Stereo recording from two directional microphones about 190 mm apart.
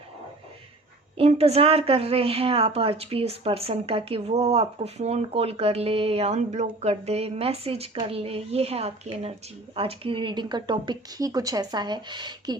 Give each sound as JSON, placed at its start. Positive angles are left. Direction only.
{"t": 1.1, "sound": "a woman's voice", "side_deg": -30}